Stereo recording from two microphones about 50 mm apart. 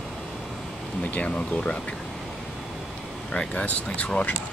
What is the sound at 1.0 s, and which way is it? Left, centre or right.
Speech, left.